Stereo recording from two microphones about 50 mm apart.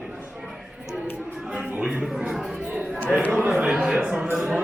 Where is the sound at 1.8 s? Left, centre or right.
Right.